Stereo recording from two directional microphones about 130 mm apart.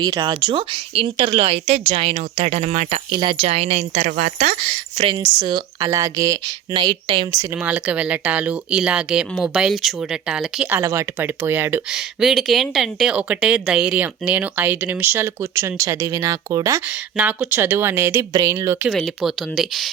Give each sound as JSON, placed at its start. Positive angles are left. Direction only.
{"t": 0.0, "sound": "speech", "side_deg": -30}
{"t": 3.1, "sound": "speech", "side_deg": -40}
{"t": 4.9, "sound": "speech", "side_deg": -40}
{"t": 6.7, "sound": "speech", "side_deg": -35}
{"t": 7.5, "sound": "speech", "side_deg": -10}
{"t": 10.8, "sound": "speech", "side_deg": -20}
{"t": 11.9, "sound": "speech", "side_deg": -5}
{"t": 16.8, "sound": "speech", "side_deg": -10}
{"t": 18.9, "sound": "speech", "side_deg": 0}